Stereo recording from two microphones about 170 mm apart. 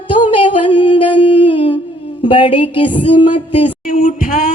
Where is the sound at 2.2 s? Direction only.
30° left (ahead or behind).